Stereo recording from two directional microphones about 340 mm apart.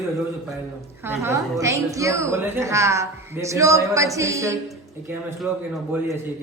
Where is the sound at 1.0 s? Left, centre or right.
Centre.